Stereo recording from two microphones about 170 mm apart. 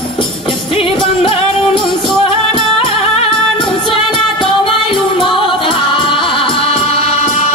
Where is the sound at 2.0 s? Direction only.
Centre (ahead or behind).